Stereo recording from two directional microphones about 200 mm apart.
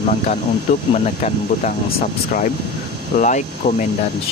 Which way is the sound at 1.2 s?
40° left (ahead or behind).